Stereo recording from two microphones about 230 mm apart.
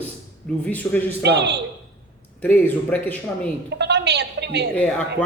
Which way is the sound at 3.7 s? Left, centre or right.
Right.